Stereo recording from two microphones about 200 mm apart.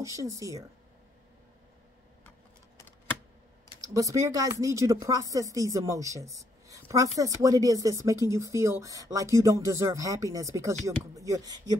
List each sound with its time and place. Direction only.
0.0 s speech: 15° right (ahead or behind)
3.8 s speech: 15° right (ahead or behind)